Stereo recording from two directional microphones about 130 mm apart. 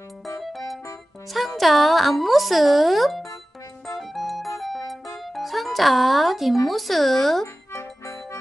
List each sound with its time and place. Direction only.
1.3 s speech: centre (ahead or behind)
4.1 s music: centre (ahead or behind)
6.7 s speech: centre (ahead or behind)
7.7 s music: 20° left (ahead or behind)